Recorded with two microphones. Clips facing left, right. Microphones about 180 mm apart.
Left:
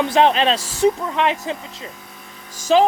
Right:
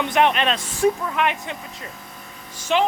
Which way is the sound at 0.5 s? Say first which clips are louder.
Left 3 dB; 90° left.